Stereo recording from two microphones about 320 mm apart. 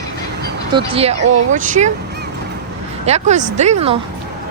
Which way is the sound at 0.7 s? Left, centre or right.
Centre.